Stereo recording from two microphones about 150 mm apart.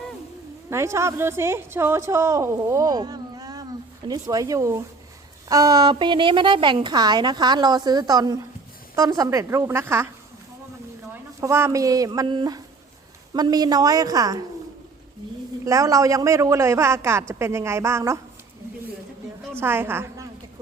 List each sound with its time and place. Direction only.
0.7 s a woman's voice: 20° right (ahead or behind)
11.1 s a woman's voice: 20° right (ahead or behind)
15.6 s a woman's voice: 20° right (ahead or behind)
19.5 s a woman's voice: 15° right (ahead or behind)